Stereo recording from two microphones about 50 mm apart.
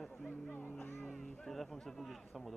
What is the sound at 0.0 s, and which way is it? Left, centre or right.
Music, centre.